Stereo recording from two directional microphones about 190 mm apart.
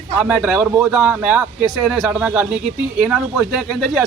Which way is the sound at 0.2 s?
5° right (ahead or behind).